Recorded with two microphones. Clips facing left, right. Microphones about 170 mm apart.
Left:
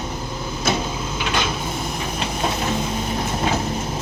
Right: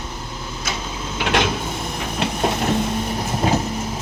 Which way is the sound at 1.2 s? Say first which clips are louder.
Right 5 dB; 75° right (ahead or behind).